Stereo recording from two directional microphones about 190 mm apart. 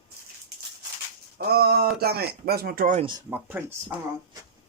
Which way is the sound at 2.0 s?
55° right (ahead or behind).